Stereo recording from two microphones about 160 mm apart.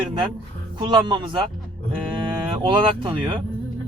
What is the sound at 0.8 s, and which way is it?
Speech, 30° right (ahead or behind).